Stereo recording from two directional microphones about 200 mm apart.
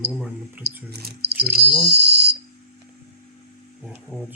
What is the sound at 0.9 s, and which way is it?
Speech, 55° right (ahead or behind).